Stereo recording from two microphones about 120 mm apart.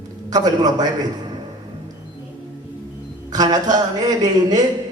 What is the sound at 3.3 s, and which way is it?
A man's voice, 30° right (ahead or behind).